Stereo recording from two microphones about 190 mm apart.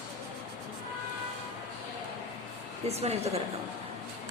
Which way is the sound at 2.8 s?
35° right (ahead or behind).